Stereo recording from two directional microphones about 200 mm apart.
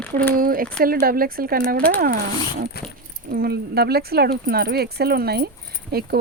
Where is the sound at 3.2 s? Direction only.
50° right (ahead or behind).